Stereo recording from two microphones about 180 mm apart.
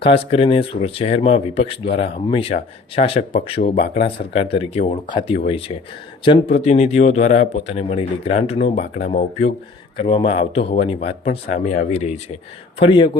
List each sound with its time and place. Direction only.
0.0 s a man's voice: 30° left (ahead or behind)
12.8 s speech: 25° left (ahead or behind)